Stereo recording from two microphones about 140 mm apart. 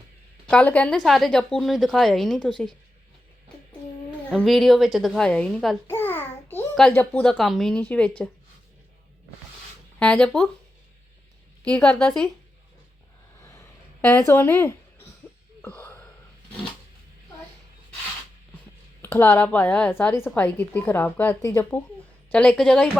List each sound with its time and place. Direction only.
0.4 s a woman's voice: 10° left (ahead or behind)
4.3 s a woman's voice: centre (ahead or behind)
5.9 s a sound: 15° left (ahead or behind)
6.9 s a woman's voice: 10° left (ahead or behind)
10.0 s a woman's voice: 10° left (ahead or behind)
11.6 s a woman's voice: 10° left (ahead or behind)
13.4 s a sound: 20° left (ahead or behind)
14.1 s speech: 15° left (ahead or behind)
15.6 s a sound: 15° left (ahead or behind)
19.0 s a woman's voice: 15° left (ahead or behind)